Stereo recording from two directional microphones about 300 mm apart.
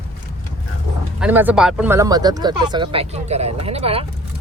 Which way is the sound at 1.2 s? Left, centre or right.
Centre.